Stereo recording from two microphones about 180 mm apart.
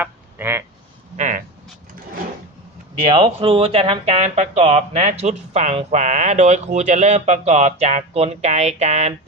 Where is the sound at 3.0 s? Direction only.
30° right (ahead or behind).